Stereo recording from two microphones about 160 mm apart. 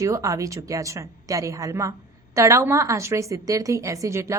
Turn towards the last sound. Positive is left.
turn(degrees=-20)  # may be behind; listen again after turning